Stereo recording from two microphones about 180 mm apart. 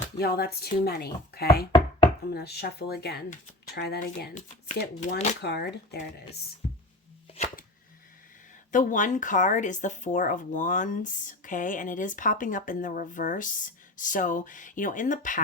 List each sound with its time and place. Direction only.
0.2 s speech: 60° left (ahead or behind)
4.9 s speech: 40° left (ahead or behind)
5.4 s speech: 65° left (ahead or behind)
6.6 s a sound: 35° left (ahead or behind)
7.3 s chopping: 40° left (ahead or behind)
8.7 s speech: 45° left (ahead or behind)